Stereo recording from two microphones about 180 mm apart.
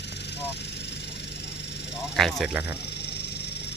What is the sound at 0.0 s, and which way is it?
Vehicle, 70° left (ahead or behind).